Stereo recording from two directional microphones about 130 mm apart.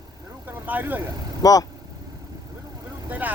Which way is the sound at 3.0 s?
15° right (ahead or behind).